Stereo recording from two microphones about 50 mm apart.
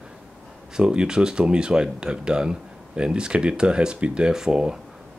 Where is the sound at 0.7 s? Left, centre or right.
Centre.